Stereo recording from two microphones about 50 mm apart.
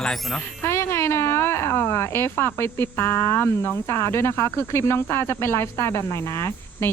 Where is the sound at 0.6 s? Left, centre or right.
Left.